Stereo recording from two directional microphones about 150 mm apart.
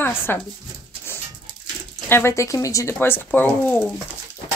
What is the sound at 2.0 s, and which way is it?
Speech, 15° left (ahead or behind).